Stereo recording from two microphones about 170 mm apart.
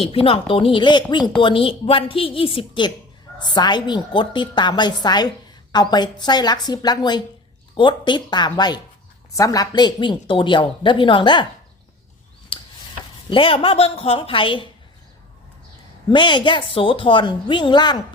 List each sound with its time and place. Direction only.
0.0 s a woman's voice: 35° left (ahead or behind)
12.5 s a sound: 30° left (ahead or behind)
13.3 s a woman's voice: 30° left (ahead or behind)
16.0 s speech: 25° left (ahead or behind)